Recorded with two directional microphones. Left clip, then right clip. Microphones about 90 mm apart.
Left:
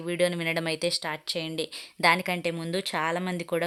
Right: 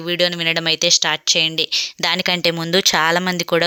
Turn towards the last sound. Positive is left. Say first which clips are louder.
# right 12 dB
turn(degrees=-50)  # may be behind; listen again after turning